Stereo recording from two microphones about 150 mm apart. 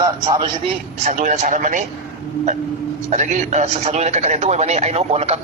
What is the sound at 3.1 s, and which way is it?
Speech, 50° right (ahead or behind).